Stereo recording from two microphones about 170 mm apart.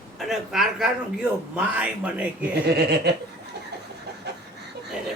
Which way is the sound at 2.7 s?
75° right (ahead or behind).